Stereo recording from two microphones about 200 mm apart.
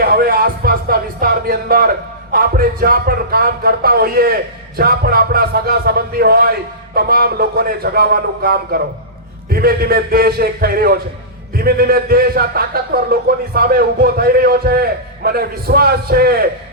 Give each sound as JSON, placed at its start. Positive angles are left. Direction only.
{"t": 0.0, "sound": "music", "side_deg": -50}
{"t": 4.8, "sound": "a man's voice", "side_deg": -50}